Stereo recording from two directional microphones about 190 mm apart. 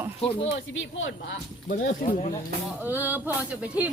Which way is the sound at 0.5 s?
80° left.